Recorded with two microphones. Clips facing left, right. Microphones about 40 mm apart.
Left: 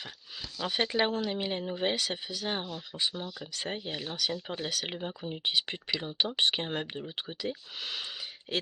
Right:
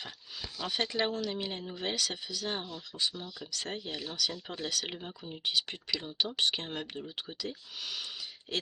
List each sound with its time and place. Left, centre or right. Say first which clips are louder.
0.7 s speech: left 3 dB; left